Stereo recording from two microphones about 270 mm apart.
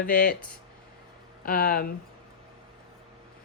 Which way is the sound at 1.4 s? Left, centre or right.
Left.